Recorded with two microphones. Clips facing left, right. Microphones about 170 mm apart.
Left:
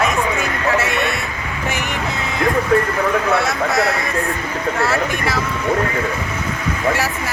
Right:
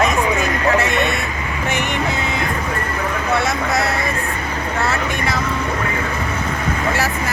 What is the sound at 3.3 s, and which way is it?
Speech, centre (ahead or behind).